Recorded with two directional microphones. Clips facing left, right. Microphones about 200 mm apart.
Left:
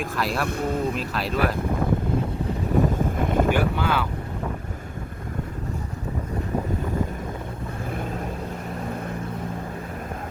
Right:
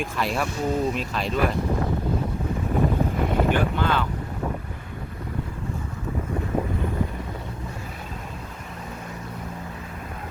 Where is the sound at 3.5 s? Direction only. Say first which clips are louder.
Even; 10° left (ahead or behind).